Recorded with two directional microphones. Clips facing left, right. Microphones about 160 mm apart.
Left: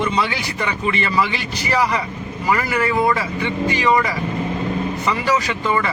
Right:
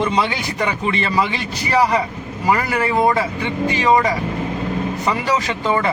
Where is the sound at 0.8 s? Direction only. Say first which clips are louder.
Left 1 dB; 30° right (ahead or behind).